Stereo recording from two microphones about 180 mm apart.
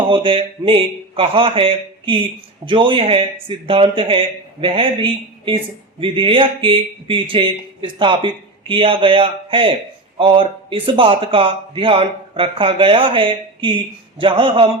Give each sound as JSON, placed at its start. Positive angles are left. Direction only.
{"t": 0.1, "sound": "speech", "side_deg": -30}